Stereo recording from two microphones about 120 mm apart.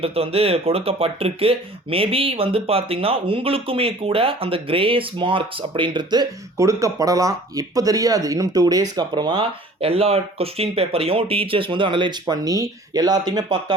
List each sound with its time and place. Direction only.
0.0 s speech: 55° right (ahead or behind)
12.2 s speech: 30° right (ahead or behind)